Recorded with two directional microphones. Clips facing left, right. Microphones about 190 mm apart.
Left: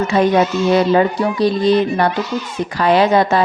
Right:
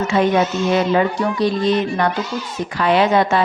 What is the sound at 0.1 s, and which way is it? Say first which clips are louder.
A woman's voice: left 2 dB; 40° left (ahead or behind).